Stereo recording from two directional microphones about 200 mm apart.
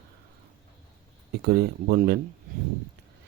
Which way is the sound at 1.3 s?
55° right (ahead or behind).